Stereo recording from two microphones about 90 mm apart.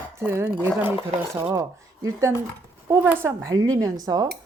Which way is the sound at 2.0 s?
40° right (ahead or behind).